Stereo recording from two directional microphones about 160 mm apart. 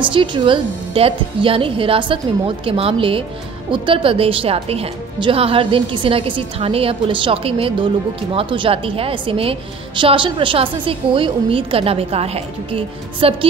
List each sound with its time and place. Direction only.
0.0 s a woman's voice: 30° right (ahead or behind)